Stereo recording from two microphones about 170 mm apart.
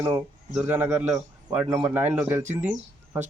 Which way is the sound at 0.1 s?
10° right (ahead or behind).